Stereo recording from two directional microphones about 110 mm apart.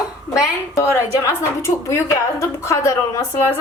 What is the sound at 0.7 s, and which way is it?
A woman's voice, 25° left (ahead or behind).